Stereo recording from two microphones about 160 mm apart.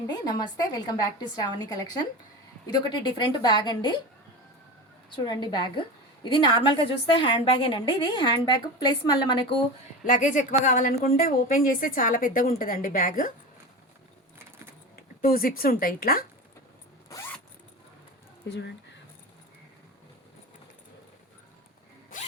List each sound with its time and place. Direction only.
0.1 s a woman's voice: 25° left (ahead or behind)
5.1 s a woman's voice: 25° left (ahead or behind)
10.0 s speech: 50° left (ahead or behind)
14.3 s keys jangling: 15° right (ahead or behind)
14.9 s speech: 70° left (ahead or behind)
18.4 s speech: 90° left